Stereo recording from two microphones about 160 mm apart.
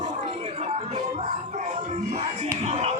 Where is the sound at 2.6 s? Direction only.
45° right (ahead or behind).